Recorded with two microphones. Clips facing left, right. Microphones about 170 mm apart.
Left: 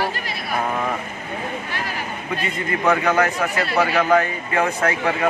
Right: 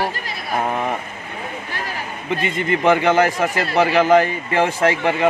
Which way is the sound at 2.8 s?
30° right (ahead or behind).